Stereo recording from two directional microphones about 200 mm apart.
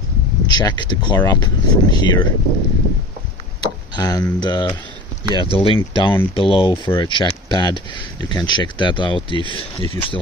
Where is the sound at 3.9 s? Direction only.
20° left (ahead or behind).